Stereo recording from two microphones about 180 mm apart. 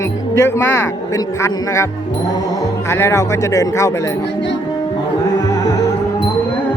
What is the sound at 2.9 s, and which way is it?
Speech, 15° left (ahead or behind).